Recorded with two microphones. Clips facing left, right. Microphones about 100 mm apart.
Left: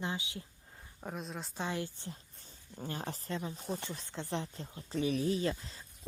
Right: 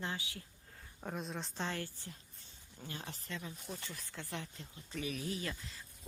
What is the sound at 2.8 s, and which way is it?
Speech, 40° left (ahead or behind).